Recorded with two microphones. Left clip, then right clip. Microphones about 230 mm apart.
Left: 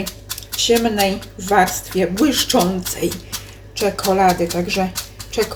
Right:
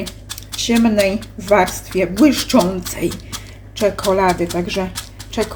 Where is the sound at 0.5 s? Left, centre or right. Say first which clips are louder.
Even; right.